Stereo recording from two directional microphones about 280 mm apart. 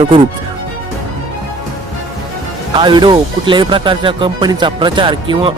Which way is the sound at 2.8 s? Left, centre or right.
Centre.